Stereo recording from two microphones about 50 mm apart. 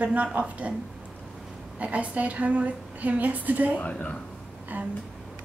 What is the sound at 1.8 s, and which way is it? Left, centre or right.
A woman's voice, right.